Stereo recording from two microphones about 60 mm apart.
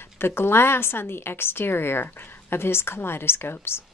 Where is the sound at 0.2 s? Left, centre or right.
Left.